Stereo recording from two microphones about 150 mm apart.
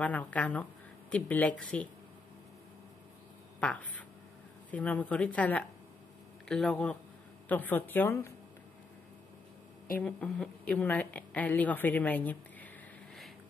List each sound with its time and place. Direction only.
0.0 s speech: 10° left (ahead or behind)
3.5 s duck: 10° left (ahead or behind)
4.6 s speech: 10° left (ahead or behind)
9.9 s a woman's voice: 10° left (ahead or behind)